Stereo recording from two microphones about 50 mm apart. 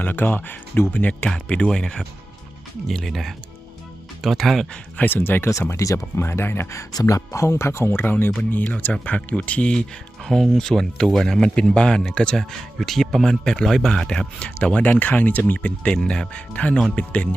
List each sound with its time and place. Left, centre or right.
0.0 s speech: left
1.2 s speech: centre
4.9 s speech: left
5.7 s speech: left
6.7 s speech: left
8.5 s speech: left
10.2 s speech: centre
12.7 s speech: centre; by 15.7 s left
15.8 s speech: centre